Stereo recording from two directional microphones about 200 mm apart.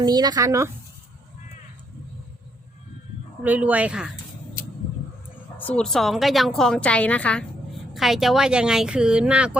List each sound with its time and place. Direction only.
0.0 s speech: 20° right (ahead or behind)
3.4 s speech: 10° right (ahead or behind)
5.5 s a woman's voice: 5° left (ahead or behind)